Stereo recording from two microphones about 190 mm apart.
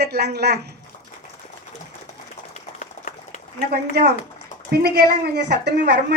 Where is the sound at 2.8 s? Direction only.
40° left (ahead or behind).